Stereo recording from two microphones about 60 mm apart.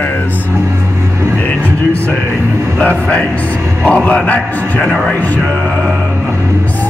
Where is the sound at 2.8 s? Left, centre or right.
Left.